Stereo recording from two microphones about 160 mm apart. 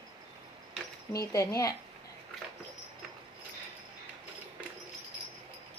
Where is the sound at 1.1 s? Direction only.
20° left (ahead or behind).